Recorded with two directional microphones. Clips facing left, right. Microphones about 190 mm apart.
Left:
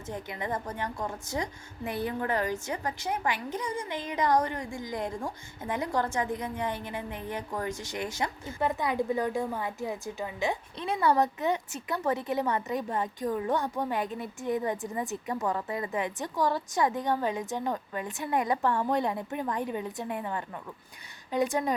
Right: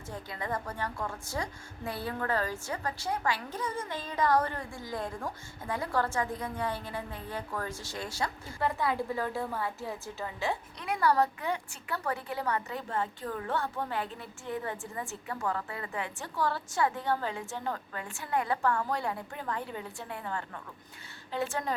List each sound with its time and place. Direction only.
0.1 s a woman's voice: 20° left (ahead or behind)